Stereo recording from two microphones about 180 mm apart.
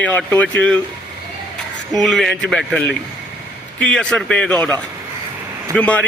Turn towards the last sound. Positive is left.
turn(degrees=5)  # may be behind; listen again after turning